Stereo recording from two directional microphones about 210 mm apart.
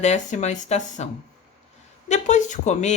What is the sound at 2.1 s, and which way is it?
Speech, 35° left (ahead or behind).